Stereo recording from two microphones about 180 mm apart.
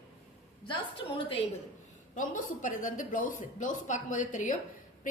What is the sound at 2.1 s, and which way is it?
A woman's voice, 45° left (ahead or behind).